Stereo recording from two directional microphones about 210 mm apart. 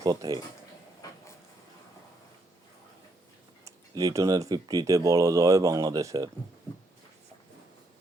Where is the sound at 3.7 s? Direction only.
15° right (ahead or behind).